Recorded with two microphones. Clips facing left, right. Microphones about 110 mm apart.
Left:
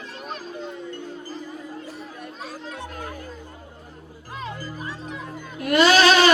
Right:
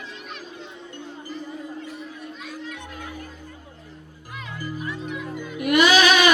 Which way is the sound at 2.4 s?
35° left (ahead or behind).